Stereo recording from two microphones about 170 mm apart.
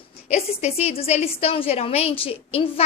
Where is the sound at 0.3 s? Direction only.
40° left (ahead or behind).